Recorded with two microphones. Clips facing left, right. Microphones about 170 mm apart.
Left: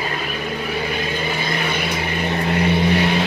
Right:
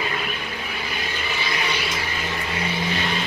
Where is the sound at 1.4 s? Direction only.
50° left (ahead or behind).